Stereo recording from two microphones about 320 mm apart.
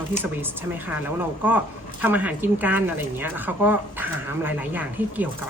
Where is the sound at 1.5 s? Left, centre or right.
Centre.